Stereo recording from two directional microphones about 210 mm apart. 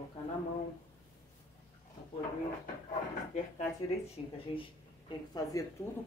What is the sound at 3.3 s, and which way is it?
Speech, 35° left (ahead or behind).